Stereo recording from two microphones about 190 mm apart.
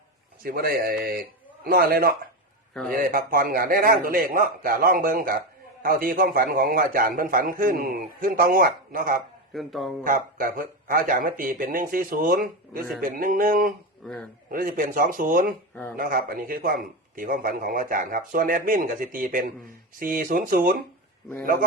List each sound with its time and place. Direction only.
0.4 s a man's voice: 50° right (ahead or behind)
9.5 s speech: centre (ahead or behind)
10.0 s a man's voice: 45° right (ahead or behind)
14.0 s speech: 5° left (ahead or behind)
14.5 s a man's voice: 45° right (ahead or behind)
15.7 s speech: 10° left (ahead or behind)
16.0 s a man's voice: 50° right (ahead or behind)